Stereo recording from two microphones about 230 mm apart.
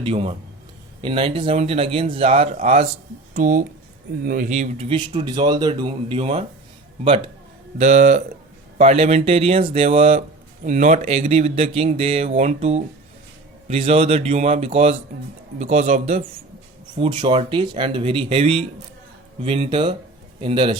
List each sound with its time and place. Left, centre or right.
0.0 s a man's voice: right
7.8 s a man's voice: right